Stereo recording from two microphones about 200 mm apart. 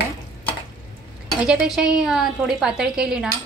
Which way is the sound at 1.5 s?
5° right (ahead or behind).